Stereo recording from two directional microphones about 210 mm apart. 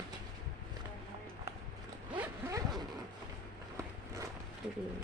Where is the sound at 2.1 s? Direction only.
15° right (ahead or behind).